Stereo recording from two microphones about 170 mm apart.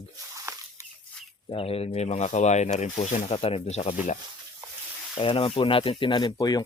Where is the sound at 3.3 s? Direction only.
35° left (ahead or behind).